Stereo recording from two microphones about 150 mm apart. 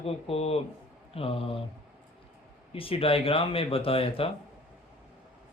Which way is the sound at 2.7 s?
40° left (ahead or behind).